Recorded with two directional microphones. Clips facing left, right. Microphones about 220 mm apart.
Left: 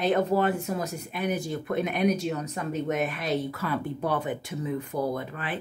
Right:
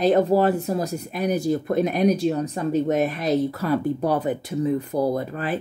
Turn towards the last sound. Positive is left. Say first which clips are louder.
# right 7 dB
turn(degrees=-40)  # may be behind; listen again after turning